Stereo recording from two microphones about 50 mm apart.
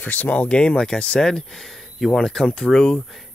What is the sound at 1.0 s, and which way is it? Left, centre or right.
Speech, centre.